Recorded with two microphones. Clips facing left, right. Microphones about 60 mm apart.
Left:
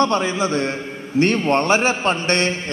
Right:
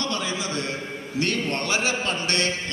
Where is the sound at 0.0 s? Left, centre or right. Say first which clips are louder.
Left 10 dB; left.